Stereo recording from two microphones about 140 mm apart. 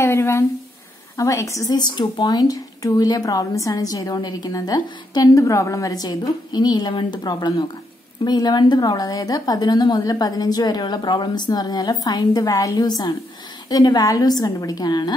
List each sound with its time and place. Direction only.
0.0 s speech: 20° left (ahead or behind)